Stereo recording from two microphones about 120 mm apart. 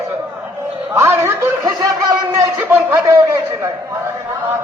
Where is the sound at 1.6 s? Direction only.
35° right (ahead or behind).